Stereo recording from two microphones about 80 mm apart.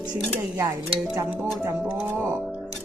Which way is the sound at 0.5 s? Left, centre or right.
Right.